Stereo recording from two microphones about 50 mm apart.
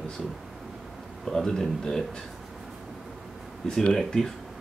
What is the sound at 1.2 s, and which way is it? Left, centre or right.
Speech, centre.